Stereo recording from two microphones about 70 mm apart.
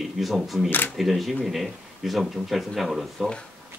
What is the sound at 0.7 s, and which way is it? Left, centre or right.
Speech, left.